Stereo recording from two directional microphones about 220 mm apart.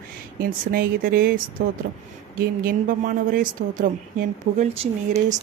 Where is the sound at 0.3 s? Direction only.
40° right (ahead or behind).